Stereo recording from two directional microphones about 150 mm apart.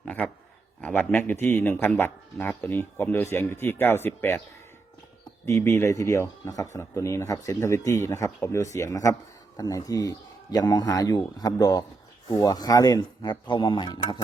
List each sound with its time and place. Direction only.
0.0 s a sound: 10° left (ahead or behind)
0.8 s speech: 10° left (ahead or behind)
5.5 s speech: 20° left (ahead or behind)